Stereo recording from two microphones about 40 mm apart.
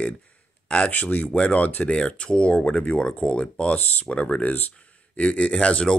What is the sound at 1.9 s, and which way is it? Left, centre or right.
Speech, left.